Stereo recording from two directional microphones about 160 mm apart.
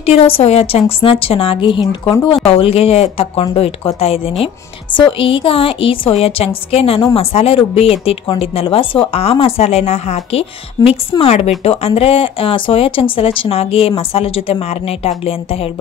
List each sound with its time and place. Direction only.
0.0 s a woman's voice: 40° left (ahead or behind)
10.8 s a woman's voice: 25° left (ahead or behind)
11.1 s speech: 40° left (ahead or behind)